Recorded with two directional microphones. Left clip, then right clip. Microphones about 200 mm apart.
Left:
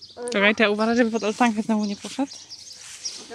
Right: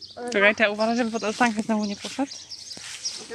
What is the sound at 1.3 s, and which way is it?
Speech, 20° left (ahead or behind).